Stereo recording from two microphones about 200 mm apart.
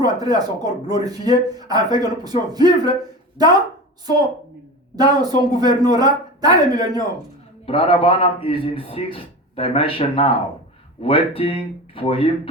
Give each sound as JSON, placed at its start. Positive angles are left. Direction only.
{"t": 0.0, "sound": "speech", "side_deg": -20}
{"t": 4.9, "sound": "speech", "side_deg": -20}
{"t": 7.7, "sound": "a man's voice", "side_deg": 25}